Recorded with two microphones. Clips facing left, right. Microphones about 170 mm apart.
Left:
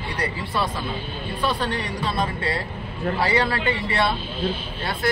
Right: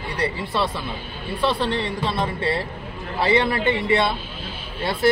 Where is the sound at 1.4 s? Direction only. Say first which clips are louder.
Right 3 dB; 25° right (ahead or behind).